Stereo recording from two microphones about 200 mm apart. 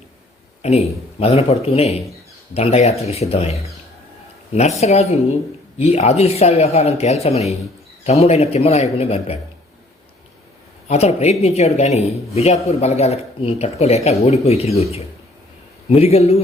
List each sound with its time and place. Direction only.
0.6 s speech: 30° left (ahead or behind)
10.8 s speech: 35° left (ahead or behind)